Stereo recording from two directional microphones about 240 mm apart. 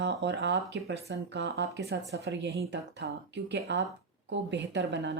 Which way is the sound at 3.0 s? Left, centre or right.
Right.